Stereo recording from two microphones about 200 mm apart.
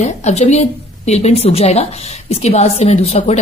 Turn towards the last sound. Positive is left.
turn(degrees=30)  # may be behind; listen again after turning